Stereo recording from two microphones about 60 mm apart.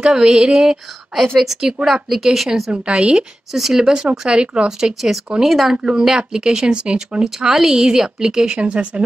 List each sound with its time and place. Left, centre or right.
0.0 s speech: centre
1.2 s speech: centre
2.7 s speech: centre